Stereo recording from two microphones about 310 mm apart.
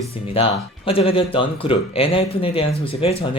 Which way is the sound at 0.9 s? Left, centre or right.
Centre.